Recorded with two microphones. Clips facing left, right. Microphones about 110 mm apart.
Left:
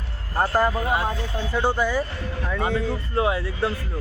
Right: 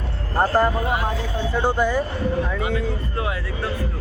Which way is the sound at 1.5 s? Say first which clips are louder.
Right 1 dB; 15° right (ahead or behind).